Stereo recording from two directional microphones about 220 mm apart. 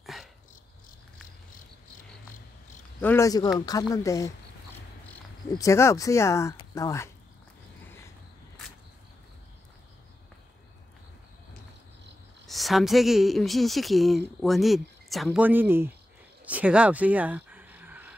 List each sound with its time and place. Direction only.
0.0 s dog: centre (ahead or behind)
3.0 s speech: 10° left (ahead or behind)
5.6 s speech: 15° left (ahead or behind)
12.4 s a woman's voice: centre (ahead or behind)
16.4 s a sound: 5° right (ahead or behind)